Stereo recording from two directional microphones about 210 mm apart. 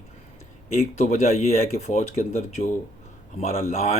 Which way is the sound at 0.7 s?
30° left (ahead or behind).